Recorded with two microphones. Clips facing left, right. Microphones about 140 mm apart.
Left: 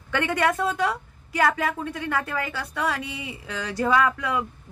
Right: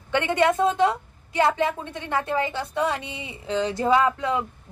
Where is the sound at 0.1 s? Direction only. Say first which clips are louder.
Right 3 dB; 25° right (ahead or behind).